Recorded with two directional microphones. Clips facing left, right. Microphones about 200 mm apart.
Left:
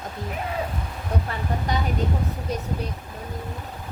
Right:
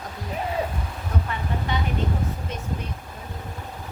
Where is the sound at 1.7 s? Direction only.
40° left (ahead or behind).